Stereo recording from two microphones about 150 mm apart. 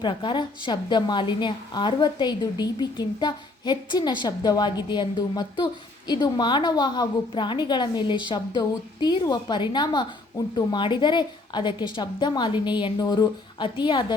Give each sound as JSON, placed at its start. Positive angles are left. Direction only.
{"t": 0.0, "sound": "a woman's voice", "side_deg": 30}